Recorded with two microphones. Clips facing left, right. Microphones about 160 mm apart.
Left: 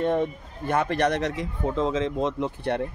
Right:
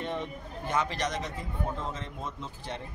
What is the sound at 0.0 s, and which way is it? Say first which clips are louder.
A man's voice: left 10 dB; 50° left (ahead or behind).